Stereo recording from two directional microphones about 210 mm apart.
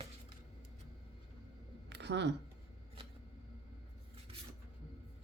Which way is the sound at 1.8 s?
55° right (ahead or behind).